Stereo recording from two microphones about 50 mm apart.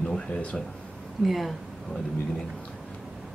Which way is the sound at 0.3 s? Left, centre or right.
Left.